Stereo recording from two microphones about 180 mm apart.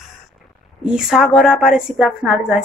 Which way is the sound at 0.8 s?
5° right (ahead or behind).